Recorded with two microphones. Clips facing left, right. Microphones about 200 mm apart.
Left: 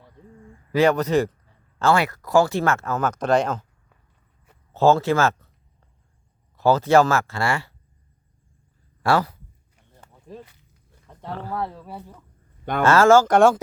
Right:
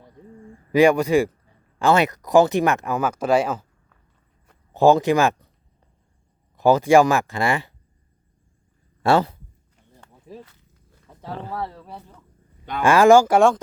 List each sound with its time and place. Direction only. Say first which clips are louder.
0.7 s speech: right 3 dB; 15° right (ahead or behind)
4.7 s speech: right 2 dB; 15° right (ahead or behind)
6.6 s speech: right 2 dB; 15° right (ahead or behind)
9.0 s a man's voice: right 3 dB; 25° right (ahead or behind)
10.3 s speech: even; 5° right (ahead or behind)
11.1 s a sound: even; centre (ahead or behind)
11.5 s speech: left 2 dB; centre (ahead or behind)
12.8 s speech: right 2 dB; 15° right (ahead or behind)